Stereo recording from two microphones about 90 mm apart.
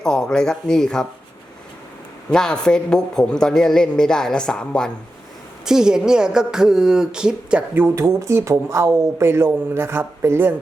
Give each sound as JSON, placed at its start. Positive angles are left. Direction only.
{"t": 0.0, "sound": "a man's voice", "side_deg": 5}
{"t": 2.3, "sound": "a man's voice", "side_deg": 5}
{"t": 5.6, "sound": "speech", "side_deg": -5}
{"t": 7.9, "sound": "speech", "side_deg": -35}